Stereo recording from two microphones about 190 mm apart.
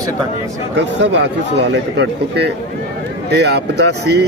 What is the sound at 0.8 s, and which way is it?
Speech, 65° right (ahead or behind).